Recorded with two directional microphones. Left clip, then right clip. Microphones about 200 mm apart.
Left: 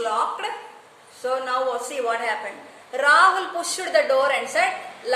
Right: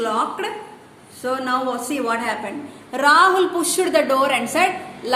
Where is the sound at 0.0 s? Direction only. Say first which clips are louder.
Right 2 dB; 40° right (ahead or behind).